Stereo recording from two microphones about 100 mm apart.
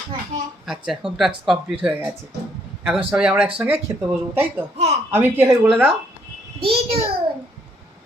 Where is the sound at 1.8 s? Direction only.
15° right (ahead or behind).